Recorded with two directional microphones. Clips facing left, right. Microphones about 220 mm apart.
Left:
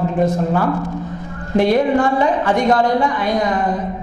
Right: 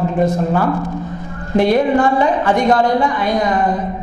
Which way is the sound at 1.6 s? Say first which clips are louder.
Right 1 dB; 10° right (ahead or behind).